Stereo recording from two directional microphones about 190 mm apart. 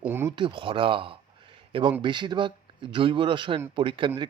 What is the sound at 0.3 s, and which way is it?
Speech, 25° right (ahead or behind).